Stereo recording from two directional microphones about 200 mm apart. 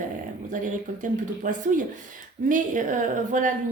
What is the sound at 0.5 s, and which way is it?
A woman's voice, 40° right (ahead or behind).